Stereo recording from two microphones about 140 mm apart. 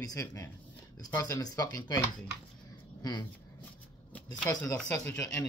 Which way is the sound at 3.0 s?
30° left (ahead or behind).